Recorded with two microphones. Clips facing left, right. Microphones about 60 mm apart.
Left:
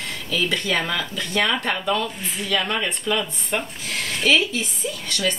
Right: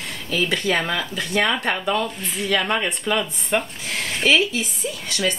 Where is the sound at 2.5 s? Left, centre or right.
Right.